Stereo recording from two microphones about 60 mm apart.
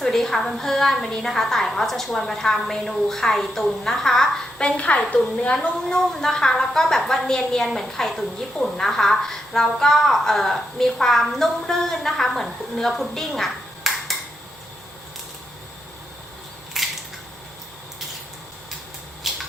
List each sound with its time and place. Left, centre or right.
0.0 s a woman's voice: centre
16.8 s camera: centre
19.3 s a sound: centre